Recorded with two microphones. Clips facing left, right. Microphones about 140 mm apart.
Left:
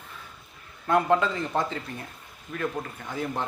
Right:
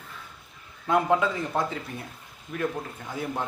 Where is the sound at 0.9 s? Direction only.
10° right (ahead or behind).